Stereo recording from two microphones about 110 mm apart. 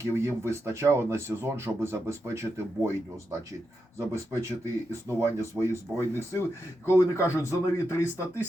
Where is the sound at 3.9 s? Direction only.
25° right (ahead or behind).